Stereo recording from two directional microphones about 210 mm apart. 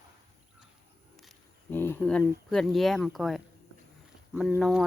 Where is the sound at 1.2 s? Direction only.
5° left (ahead or behind).